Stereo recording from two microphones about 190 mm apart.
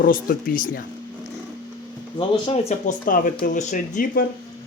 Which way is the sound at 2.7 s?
45° left (ahead or behind).